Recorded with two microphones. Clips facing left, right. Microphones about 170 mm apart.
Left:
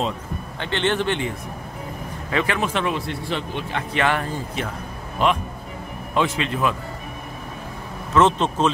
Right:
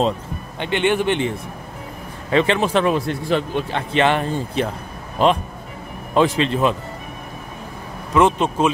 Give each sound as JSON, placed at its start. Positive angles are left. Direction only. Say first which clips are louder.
{"t": 0.6, "sound": "speech", "louder": "right 4 dB", "side_deg": -15}
{"t": 2.3, "sound": "speech", "louder": "right 6 dB", "side_deg": -25}
{"t": 3.7, "sound": "speech", "louder": "right 4 dB", "side_deg": -25}
{"t": 8.1, "sound": "speech", "louder": "right 2 dB", "side_deg": -10}